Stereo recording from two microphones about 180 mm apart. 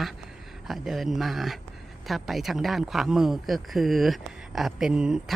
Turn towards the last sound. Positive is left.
turn(degrees=-5)  # may be behind; listen again after turning